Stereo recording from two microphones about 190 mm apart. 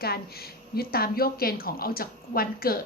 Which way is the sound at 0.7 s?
55° left (ahead or behind).